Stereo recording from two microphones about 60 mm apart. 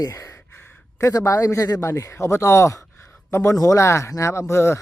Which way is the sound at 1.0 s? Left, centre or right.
Left.